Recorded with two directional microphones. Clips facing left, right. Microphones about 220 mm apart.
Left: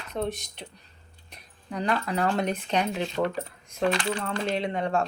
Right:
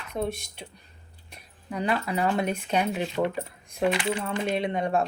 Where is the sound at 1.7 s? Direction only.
10° right (ahead or behind).